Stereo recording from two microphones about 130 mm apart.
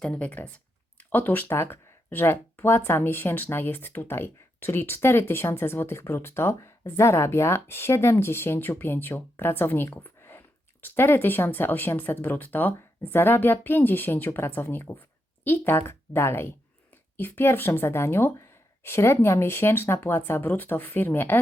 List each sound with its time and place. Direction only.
0.0 s speech: 10° left (ahead or behind)